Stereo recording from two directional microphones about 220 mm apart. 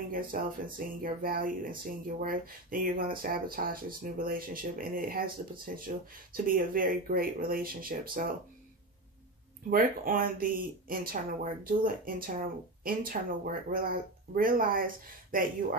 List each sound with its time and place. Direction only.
0.1 s speech: 40° right (ahead or behind)
9.7 s speech: 40° right (ahead or behind)